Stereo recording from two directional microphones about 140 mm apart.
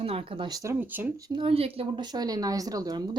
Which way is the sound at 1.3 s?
40° right (ahead or behind).